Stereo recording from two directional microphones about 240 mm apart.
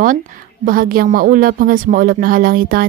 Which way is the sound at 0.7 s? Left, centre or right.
Right.